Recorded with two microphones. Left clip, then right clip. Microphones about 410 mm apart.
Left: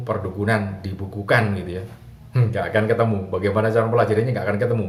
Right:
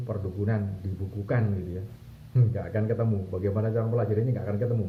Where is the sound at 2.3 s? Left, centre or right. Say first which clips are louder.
Left 10 dB; centre.